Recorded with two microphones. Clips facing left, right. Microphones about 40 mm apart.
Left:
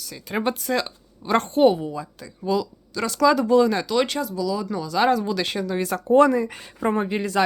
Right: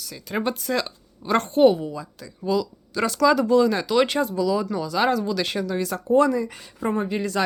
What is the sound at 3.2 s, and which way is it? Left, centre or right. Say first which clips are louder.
Speech: left 1 dB; centre.